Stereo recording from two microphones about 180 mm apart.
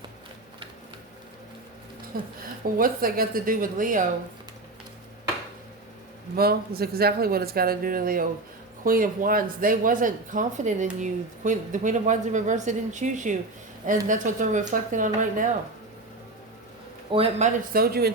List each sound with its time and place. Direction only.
2.4 s a woman's voice: 55° right (ahead or behind)
6.3 s a woman's voice: 60° right (ahead or behind)
17.1 s a man's voice: 30° right (ahead or behind)
17.7 s speech: 55° right (ahead or behind)